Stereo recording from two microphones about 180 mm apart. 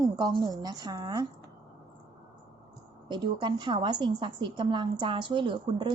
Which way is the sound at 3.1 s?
25° right (ahead or behind).